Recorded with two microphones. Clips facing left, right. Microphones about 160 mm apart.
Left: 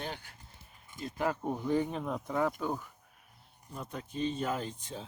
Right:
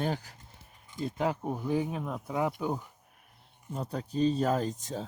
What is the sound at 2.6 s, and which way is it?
Speech, 15° right (ahead or behind).